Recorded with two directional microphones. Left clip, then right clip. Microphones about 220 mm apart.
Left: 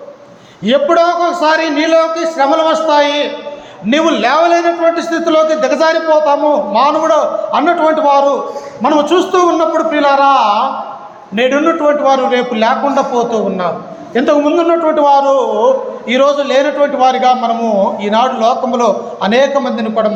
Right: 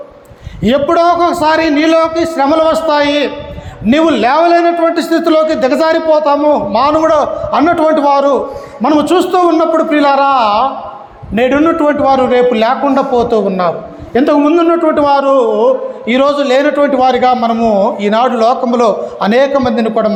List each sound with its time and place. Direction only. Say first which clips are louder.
0.6 s a man's voice: even; 40° right (ahead or behind)